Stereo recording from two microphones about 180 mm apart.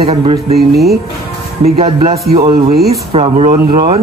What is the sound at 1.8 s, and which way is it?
Speech, 35° right (ahead or behind).